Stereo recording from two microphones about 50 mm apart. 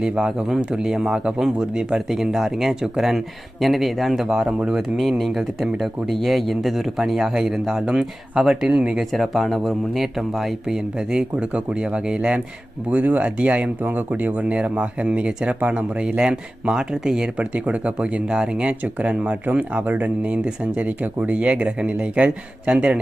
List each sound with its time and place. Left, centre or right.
0.0 s speech: centre
4.4 s speech: right
4.8 s speech: centre
12.9 s speech: right
19.5 s speech: right